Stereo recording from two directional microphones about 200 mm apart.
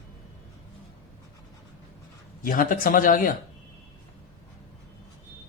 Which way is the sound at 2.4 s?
45° left (ahead or behind).